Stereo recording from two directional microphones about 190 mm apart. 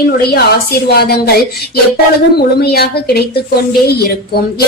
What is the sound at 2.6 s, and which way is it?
Speech, 55° left (ahead or behind).